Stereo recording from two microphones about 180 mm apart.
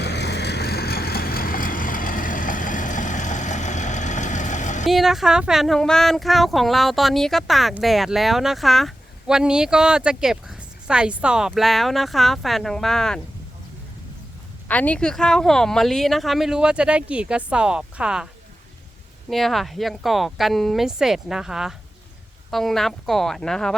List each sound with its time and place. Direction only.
0.0 s vehicle: 70° left (ahead or behind); by 4.9 s 45° left (ahead or behind)
4.9 s speech: centre (ahead or behind)
14.7 s speech: 10° left (ahead or behind)
19.3 s speech: centre (ahead or behind)